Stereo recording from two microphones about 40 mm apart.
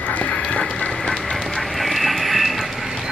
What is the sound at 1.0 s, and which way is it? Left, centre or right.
Train, centre.